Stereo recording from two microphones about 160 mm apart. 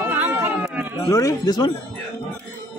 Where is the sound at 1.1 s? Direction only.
20° left (ahead or behind).